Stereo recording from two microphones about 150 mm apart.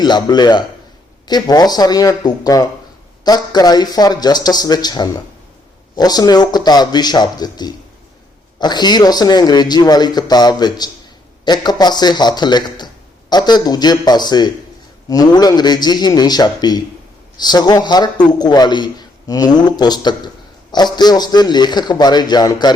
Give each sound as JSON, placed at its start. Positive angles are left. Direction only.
{"t": 0.0, "sound": "a man's voice", "side_deg": 30}